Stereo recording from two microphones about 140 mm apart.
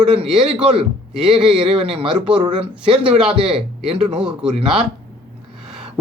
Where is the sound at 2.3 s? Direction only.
35° right (ahead or behind).